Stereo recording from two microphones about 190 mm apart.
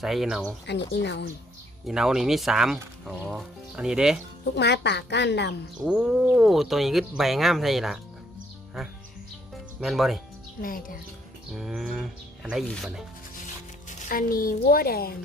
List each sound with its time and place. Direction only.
0.0 s speech: centre (ahead or behind)
0.9 s speech: 65° left (ahead or behind)
1.9 s speech: centre (ahead or behind)
4.4 s speech: 65° left (ahead or behind)
5.7 s speech: 5° right (ahead or behind)
9.8 s speech: centre (ahead or behind)
10.6 s a woman's voice: 45° left (ahead or behind)
11.5 s speech: centre (ahead or behind)
14.1 s a woman's voice: 50° left (ahead or behind)